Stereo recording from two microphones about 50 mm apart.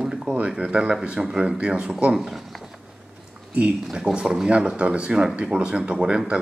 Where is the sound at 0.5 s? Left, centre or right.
Right.